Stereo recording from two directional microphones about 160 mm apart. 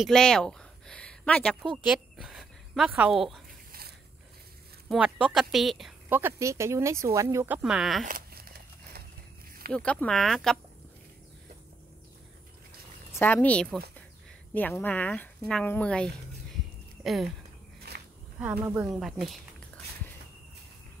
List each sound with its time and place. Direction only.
0.0 s speech: 5° left (ahead or behind)
4.8 s speech: 5° right (ahead or behind)
6.0 s speech: 15° right (ahead or behind)
8.0 s crumpling: 65° right (ahead or behind)
9.7 s speech: 5° left (ahead or behind)
13.1 s speech: 10° left (ahead or behind)
17.9 s a sound: 90° right
18.4 s speech: 10° right (ahead or behind)
18.9 s speech: centre (ahead or behind)